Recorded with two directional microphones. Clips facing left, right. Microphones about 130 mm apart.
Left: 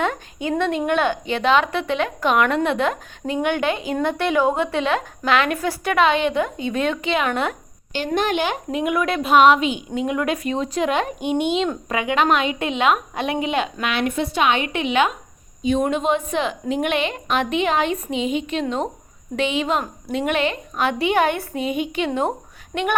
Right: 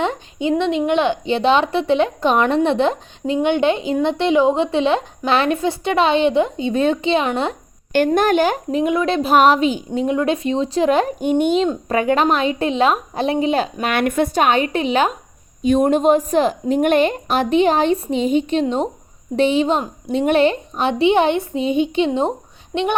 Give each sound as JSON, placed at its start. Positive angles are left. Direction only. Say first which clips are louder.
{"t": 0.0, "sound": "a woman's voice", "louder": "right 3 dB", "side_deg": -25}
{"t": 7.9, "sound": "speech", "louder": "right 7 dB", "side_deg": -50}
{"t": 13.8, "sound": "a woman's voice", "louder": "right 4 dB", "side_deg": -55}